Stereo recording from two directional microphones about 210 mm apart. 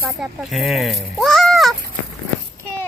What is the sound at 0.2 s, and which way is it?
Speech, centre (ahead or behind).